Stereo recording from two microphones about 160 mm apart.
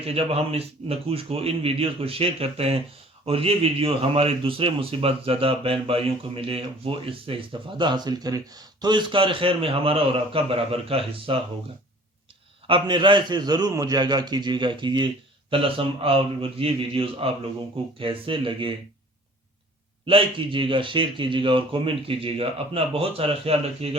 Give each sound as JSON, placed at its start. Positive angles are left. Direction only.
{"t": 0.0, "sound": "a man's voice", "side_deg": -40}
{"t": 12.6, "sound": "a man's voice", "side_deg": -30}
{"t": 20.1, "sound": "a man's voice", "side_deg": -35}